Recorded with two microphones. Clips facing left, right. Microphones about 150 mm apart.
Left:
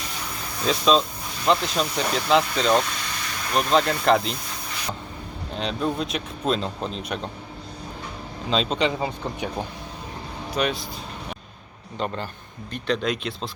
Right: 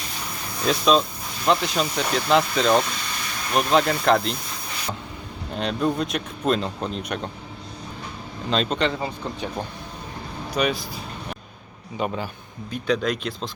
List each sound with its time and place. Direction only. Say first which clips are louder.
0.6 s a man's voice: right 1 dB; centre (ahead or behind)
5.5 s a man's voice: right 2 dB; centre (ahead or behind)
8.4 s a man's voice: even; centre (ahead or behind)
8.9 s speech: left 1 dB; 20° left (ahead or behind)
10.5 s a man's voice: right 1 dB; centre (ahead or behind)
11.9 s a man's voice: right 2 dB; 5° right (ahead or behind)